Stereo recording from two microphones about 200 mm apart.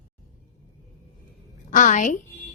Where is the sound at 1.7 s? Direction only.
40° left (ahead or behind).